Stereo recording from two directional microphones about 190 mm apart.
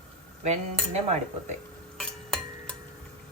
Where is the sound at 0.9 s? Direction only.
35° right (ahead or behind).